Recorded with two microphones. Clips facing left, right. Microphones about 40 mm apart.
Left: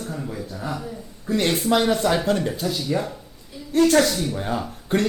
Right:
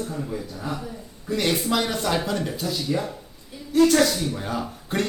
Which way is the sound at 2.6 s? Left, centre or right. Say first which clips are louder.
Left 2 dB; left.